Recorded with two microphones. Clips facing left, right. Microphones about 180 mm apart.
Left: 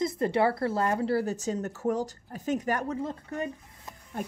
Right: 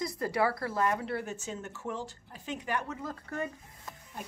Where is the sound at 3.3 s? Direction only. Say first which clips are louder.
Left 3 dB; 20° left (ahead or behind).